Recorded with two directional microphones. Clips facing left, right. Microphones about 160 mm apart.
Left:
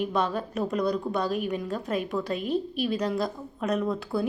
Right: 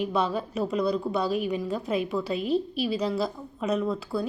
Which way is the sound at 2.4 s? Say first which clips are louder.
Right 1 dB; 45° left (ahead or behind).